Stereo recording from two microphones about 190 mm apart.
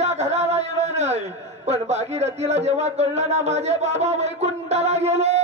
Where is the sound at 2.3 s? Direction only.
35° right (ahead or behind).